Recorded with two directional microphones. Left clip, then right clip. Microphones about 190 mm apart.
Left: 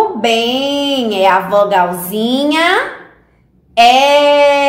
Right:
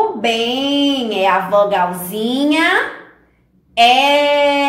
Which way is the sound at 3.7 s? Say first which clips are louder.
Left 3 dB; 30° left (ahead or behind).